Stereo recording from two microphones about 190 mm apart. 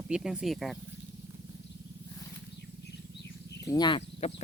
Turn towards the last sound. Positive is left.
turn(degrees=30)  # may be behind; listen again after turning